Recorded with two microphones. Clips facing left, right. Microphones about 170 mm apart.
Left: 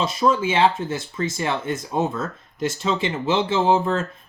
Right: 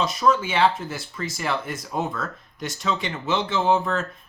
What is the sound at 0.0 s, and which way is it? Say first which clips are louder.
Speech: left 1 dB; 30° left (ahead or behind).